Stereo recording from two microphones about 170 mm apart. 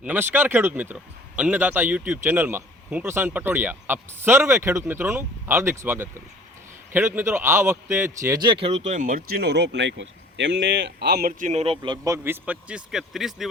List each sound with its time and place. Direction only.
0.0 s a man's voice: 10° right (ahead or behind)